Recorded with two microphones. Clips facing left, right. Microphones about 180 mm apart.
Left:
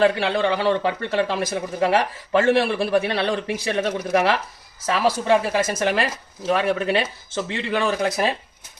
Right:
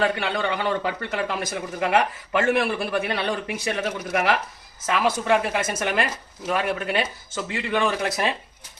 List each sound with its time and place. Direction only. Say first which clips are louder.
0.0 s a man's voice: left 5 dB; 30° left (ahead or behind)